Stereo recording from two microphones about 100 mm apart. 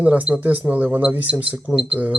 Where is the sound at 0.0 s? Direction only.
15° right (ahead or behind).